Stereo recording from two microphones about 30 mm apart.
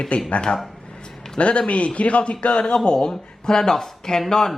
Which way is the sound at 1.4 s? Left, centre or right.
Left.